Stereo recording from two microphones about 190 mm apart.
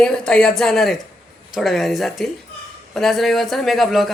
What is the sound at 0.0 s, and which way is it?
Speech, 5° left (ahead or behind).